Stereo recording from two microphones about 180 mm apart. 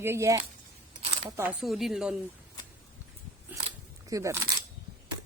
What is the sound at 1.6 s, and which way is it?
Speech, centre (ahead or behind).